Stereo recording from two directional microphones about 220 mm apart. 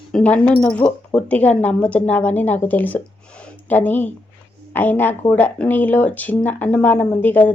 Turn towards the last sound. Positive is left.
turn(degrees=10)  # may be behind; listen again after turning